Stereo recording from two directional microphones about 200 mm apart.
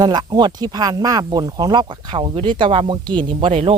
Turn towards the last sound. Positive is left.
turn(degrees=-25)  # may be behind; listen again after turning